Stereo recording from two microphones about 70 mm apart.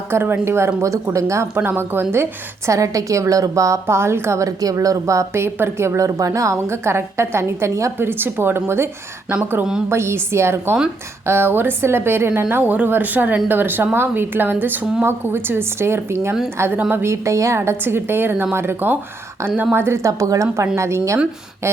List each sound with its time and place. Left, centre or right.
0.1 s a woman's voice: right
1.5 s a woman's voice: right
2.6 s a woman's voice: right
9.3 s a woman's voice: right
9.9 s a woman's voice: right